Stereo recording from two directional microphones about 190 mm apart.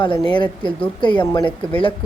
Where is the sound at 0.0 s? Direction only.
25° left (ahead or behind).